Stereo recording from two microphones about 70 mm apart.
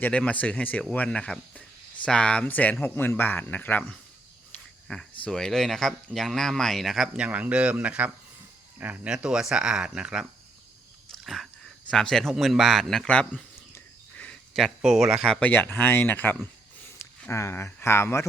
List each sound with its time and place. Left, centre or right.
0.1 s speech: centre
2.8 s speech: left
4.9 s speech: centre
7.2 s speech: right
11.2 s a sound: centre
11.9 s speech: centre
12.3 s speech: centre
13.1 s speech: centre
14.8 s speech: centre
15.2 s speech: centre
15.4 s a man's voice: left